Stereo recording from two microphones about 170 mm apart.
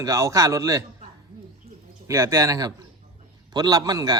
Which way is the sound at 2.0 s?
15° right (ahead or behind).